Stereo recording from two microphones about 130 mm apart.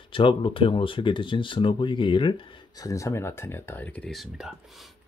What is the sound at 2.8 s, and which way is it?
Speech, 25° left (ahead or behind).